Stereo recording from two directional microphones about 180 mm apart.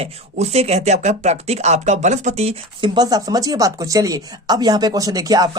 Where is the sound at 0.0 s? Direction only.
35° right (ahead or behind).